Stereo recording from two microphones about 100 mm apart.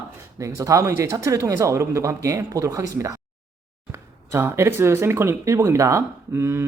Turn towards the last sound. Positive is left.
turn(degrees=-25)  # may be behind; listen again after turning